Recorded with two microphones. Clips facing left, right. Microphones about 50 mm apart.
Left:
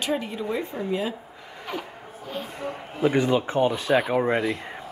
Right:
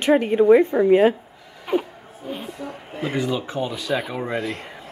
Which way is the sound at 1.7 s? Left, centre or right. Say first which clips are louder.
Right 10 dB; centre.